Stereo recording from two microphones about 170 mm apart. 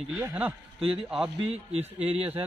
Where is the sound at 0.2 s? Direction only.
10° right (ahead or behind).